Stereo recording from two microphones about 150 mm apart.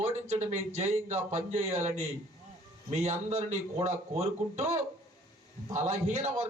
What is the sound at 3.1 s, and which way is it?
A man's voice, 45° right (ahead or behind).